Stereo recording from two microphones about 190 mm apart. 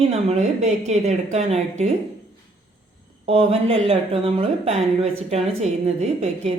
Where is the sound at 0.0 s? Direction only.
35° right (ahead or behind).